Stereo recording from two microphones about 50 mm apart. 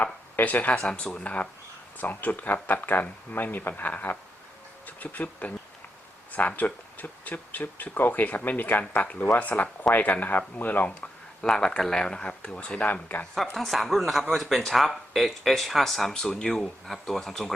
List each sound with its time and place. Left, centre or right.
0.3 s speech: left
11.4 s speech: centre; by 13.2 s left
13.3 s speech: centre